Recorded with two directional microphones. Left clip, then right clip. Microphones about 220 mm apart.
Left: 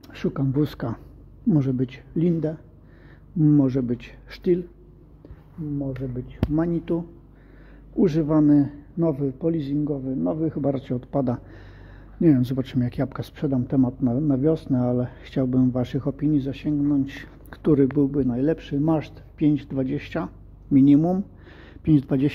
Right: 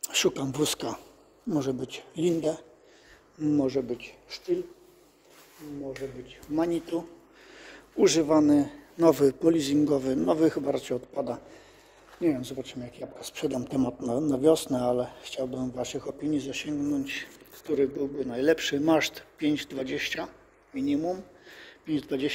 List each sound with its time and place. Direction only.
0.0 s a man's voice: 15° right (ahead or behind)
3.4 s speech: 5° left (ahead or behind)
6.2 s speech: 5° left (ahead or behind)
8.9 s a man's voice: 20° right (ahead or behind)
10.7 s speech: centre (ahead or behind)
12.2 s speech: 15° left (ahead or behind)
13.2 s speech: centre (ahead or behind)
20.8 s speech: 25° left (ahead or behind)
21.5 s a sound: 15° left (ahead or behind)